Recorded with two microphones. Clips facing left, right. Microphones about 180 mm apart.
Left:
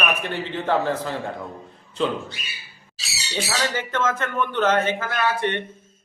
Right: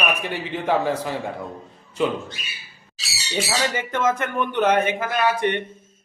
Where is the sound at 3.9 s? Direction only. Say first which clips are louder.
Right 2 dB; 15° right (ahead or behind).